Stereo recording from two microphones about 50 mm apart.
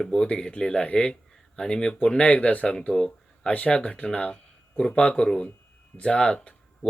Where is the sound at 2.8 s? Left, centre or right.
Centre.